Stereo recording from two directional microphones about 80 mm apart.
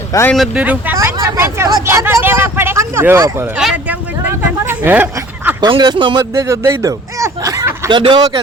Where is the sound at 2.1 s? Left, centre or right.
Right.